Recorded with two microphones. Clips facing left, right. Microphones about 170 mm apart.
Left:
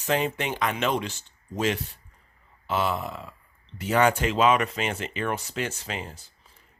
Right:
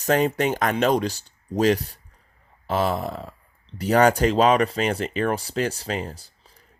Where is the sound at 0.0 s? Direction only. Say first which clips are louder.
Right 6 dB; 40° right (ahead or behind).